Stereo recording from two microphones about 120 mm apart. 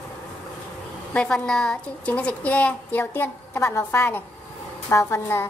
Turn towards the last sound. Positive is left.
turn(degrees=20)  # may be behind; listen again after turning